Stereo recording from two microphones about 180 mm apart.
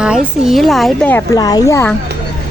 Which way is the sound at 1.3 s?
20° left (ahead or behind).